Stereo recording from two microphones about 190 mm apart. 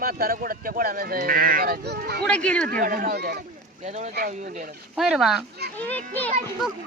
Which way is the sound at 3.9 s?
35° right (ahead or behind).